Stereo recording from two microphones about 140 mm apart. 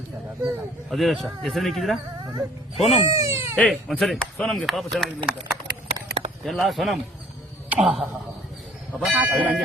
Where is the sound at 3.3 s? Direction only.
15° right (ahead or behind).